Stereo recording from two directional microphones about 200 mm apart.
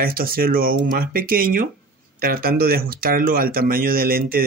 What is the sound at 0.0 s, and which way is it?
Speech, 45° right (ahead or behind).